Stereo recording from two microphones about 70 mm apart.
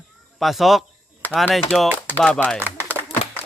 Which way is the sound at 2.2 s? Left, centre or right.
Centre.